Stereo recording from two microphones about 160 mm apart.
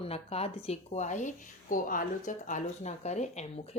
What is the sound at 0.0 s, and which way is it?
Speech, 40° left (ahead or behind).